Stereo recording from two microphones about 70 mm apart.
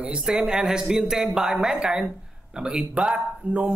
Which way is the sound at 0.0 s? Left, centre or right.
Centre.